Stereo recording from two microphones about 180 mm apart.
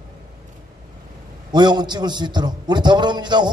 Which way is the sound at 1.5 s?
25° right (ahead or behind).